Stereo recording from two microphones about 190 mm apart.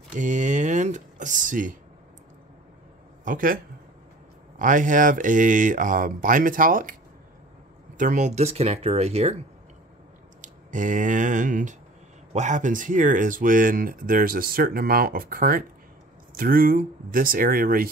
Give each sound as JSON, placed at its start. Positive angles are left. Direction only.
{"t": 0.1, "sound": "speech", "side_deg": -40}
{"t": 3.3, "sound": "speech", "side_deg": -45}
{"t": 8.0, "sound": "speech", "side_deg": -40}
{"t": 10.4, "sound": "speech", "side_deg": -40}